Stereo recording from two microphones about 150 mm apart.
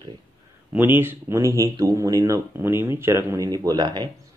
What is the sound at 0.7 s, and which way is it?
Speech, 15° right (ahead or behind).